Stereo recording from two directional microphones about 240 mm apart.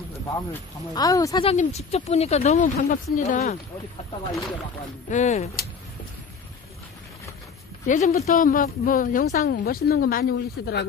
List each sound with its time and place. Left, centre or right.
0.3 s speech: centre; by 3.5 s left
5.1 s speech: left
7.8 s speech: left